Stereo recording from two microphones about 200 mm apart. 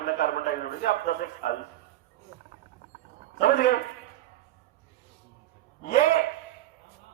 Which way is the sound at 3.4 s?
50° left (ahead or behind).